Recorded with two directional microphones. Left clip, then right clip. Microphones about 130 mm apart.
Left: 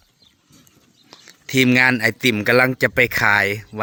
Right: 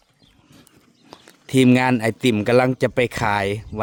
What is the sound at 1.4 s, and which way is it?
Speech, 30° right (ahead or behind).